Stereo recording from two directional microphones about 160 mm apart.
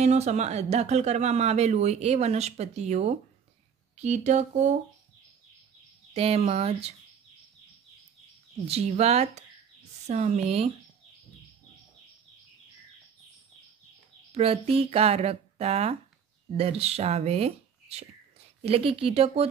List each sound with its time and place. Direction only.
0.0 s speech: 45° right (ahead or behind)
6.1 s speech: 40° right (ahead or behind)
8.6 s speech: 40° right (ahead or behind)
14.3 s speech: 35° right (ahead or behind)